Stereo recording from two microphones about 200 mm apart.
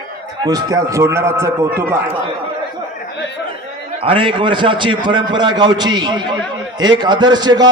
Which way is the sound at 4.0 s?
25° right (ahead or behind).